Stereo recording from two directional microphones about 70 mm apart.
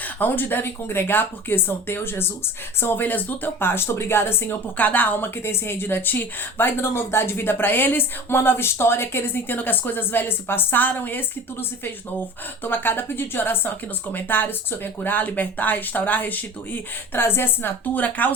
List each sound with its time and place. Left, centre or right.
0.2 s speech: left
12.6 s speech: left